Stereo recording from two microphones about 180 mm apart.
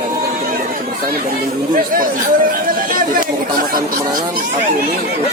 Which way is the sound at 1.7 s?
50° right (ahead or behind).